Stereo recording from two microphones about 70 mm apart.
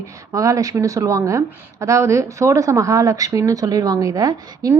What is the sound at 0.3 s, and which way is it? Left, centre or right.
A woman's voice, right.